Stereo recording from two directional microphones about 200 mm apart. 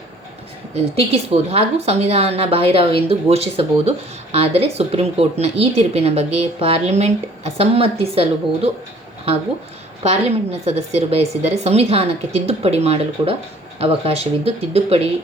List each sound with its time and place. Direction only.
0.7 s speech: 30° right (ahead or behind)
10.0 s speech: 30° right (ahead or behind)